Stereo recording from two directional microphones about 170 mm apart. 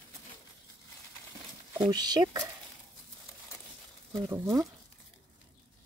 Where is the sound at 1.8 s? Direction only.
25° right (ahead or behind).